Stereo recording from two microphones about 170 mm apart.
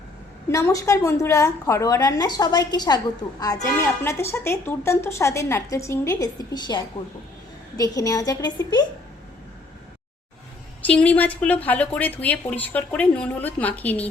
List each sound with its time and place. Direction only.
0.5 s a woman's voice: 15° left (ahead or behind)
10.8 s a woman's voice: 10° left (ahead or behind)